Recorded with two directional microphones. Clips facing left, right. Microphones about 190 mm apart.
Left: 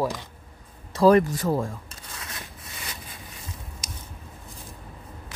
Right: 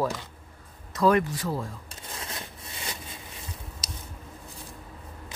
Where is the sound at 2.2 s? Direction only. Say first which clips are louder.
Right 2 dB; 25° right (ahead or behind).